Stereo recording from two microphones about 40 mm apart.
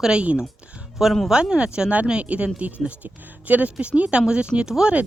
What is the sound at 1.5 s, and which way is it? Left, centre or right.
Speech, right.